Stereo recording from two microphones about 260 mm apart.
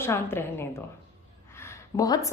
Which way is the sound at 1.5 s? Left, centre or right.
Centre.